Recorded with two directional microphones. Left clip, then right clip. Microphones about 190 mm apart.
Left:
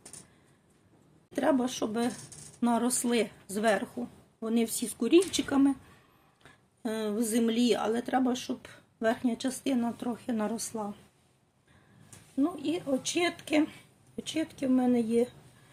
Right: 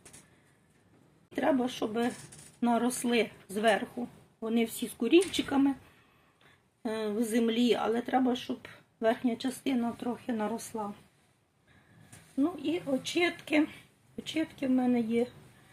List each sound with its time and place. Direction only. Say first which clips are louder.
1.3 s speech: left 1 dB; 15° left (ahead or behind)
6.8 s speech: even; 5° left (ahead or behind)
7.3 s speech: even; 10° left (ahead or behind)
7.8 s speech: even; centre (ahead or behind)
12.4 s speech: left 1 dB; 10° left (ahead or behind)